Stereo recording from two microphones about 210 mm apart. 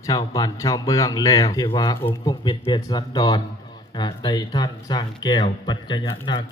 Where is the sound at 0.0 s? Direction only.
15° left (ahead or behind).